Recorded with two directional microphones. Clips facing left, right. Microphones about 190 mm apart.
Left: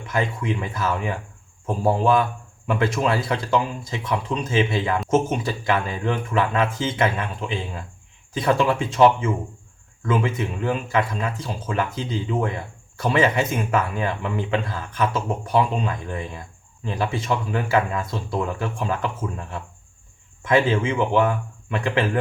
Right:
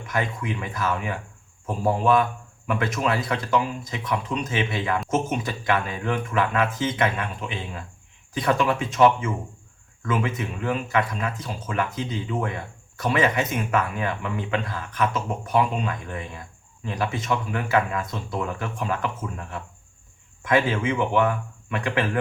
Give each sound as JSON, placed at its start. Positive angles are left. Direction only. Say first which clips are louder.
{"t": 0.1, "sound": "speech", "louder": "left 3 dB", "side_deg": 25}